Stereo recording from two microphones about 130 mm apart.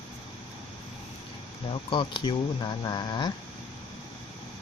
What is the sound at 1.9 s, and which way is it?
Speech, 40° left (ahead or behind).